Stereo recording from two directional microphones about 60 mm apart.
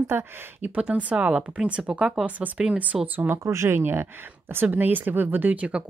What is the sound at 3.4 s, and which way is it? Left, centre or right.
A woman's voice, right.